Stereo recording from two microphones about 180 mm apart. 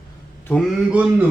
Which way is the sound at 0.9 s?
10° right (ahead or behind).